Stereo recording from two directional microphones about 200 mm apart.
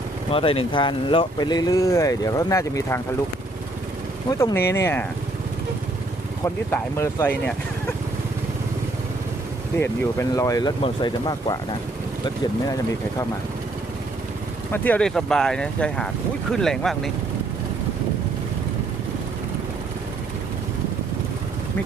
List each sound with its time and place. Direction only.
0.3 s speech: 25° left (ahead or behind)
4.3 s speech: 15° left (ahead or behind)
6.4 s speech: 10° left (ahead or behind)
9.8 s speech: 15° left (ahead or behind)
12.6 s speech: 15° left (ahead or behind)
14.7 s speech: 5° left (ahead or behind)